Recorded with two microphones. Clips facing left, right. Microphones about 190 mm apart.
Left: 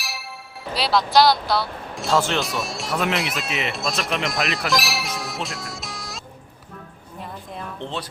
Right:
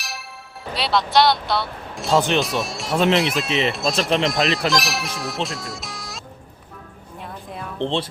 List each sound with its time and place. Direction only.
0.0 s music: centre (ahead or behind)
0.7 s speech: centre (ahead or behind)
2.1 s speech: 20° right (ahead or behind)
2.4 s speech: centre (ahead or behind)
4.1 s speech: 30° right (ahead or behind)
4.7 s music: centre (ahead or behind)
7.8 s speech: 30° right (ahead or behind)